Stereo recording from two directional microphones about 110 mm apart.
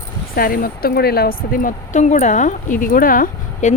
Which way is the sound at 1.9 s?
90° left.